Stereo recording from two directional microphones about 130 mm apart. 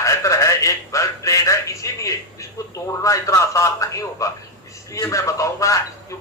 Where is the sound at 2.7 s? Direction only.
25° left (ahead or behind).